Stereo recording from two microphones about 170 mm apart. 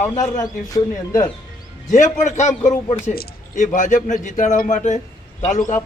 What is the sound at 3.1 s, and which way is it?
A man's voice, 55° left (ahead or behind).